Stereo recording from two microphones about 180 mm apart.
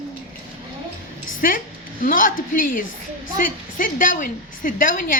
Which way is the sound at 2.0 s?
50° left (ahead or behind).